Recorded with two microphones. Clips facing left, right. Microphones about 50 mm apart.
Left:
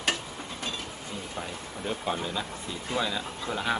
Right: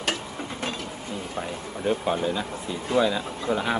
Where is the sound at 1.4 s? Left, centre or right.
Centre.